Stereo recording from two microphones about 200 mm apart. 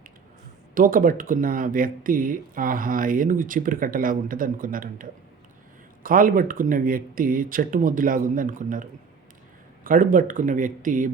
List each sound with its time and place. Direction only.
0.7 s speech: 45° right (ahead or behind)